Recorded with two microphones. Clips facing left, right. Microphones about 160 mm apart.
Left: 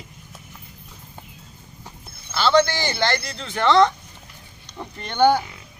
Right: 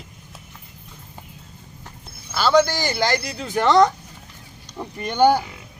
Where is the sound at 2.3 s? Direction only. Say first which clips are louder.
Right 1 dB; 5° right (ahead or behind).